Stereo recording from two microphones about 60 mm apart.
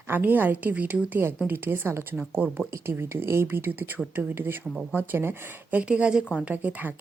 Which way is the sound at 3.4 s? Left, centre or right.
Right.